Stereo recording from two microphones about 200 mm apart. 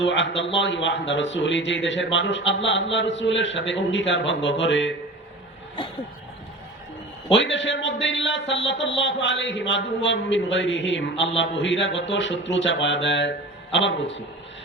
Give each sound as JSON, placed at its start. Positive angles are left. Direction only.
{"t": 0.0, "sound": "a man's voice", "side_deg": 65}
{"t": 7.3, "sound": "a man's voice", "side_deg": 65}